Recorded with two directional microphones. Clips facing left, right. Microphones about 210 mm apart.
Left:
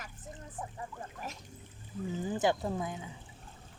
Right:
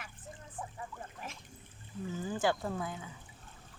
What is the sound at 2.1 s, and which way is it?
Speech, 20° left (ahead or behind).